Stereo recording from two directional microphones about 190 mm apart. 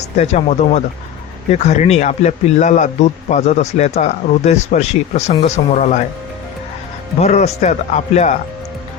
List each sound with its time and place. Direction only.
0.2 s speech: 35° left (ahead or behind)
7.2 s speech: 35° left (ahead or behind)